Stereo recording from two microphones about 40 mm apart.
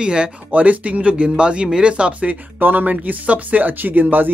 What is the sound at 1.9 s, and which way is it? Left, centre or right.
Speech, right.